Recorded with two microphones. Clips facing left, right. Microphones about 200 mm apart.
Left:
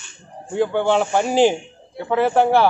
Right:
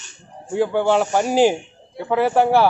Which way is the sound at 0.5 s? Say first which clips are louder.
Even; 10° right (ahead or behind).